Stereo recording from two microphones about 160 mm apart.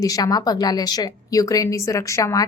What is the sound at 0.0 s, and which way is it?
A woman's voice, 20° left (ahead or behind).